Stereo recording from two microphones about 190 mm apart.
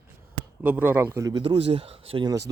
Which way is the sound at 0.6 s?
10° right (ahead or behind).